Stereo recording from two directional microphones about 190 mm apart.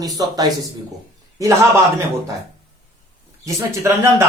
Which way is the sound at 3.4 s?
15° right (ahead or behind).